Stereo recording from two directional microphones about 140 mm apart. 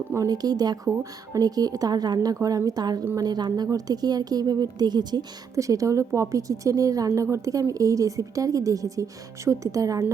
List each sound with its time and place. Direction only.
0.1 s a woman's voice: 25° right (ahead or behind)
3.0 s a woman's voice: 15° right (ahead or behind)
3.2 s a woman's voice: 30° right (ahead or behind)